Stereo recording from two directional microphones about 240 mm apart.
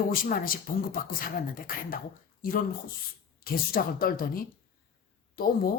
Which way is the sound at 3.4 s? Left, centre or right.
Left.